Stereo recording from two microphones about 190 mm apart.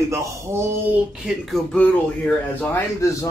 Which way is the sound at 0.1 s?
15° right (ahead or behind).